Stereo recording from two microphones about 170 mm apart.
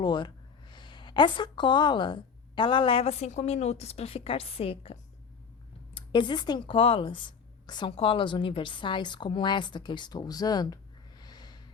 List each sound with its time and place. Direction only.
0.0 s a woman's voice: 25° left (ahead or behind)